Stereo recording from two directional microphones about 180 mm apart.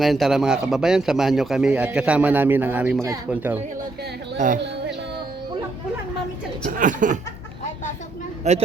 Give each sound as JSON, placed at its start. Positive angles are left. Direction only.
{"t": 0.0, "sound": "a man's voice", "side_deg": 0}
{"t": 4.4, "sound": "speech", "side_deg": -45}
{"t": 6.7, "sound": "speech", "side_deg": -45}
{"t": 8.4, "sound": "speech", "side_deg": -40}